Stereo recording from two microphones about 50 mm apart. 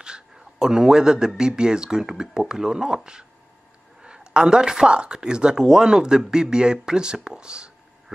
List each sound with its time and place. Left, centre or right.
0.0 s speech: centre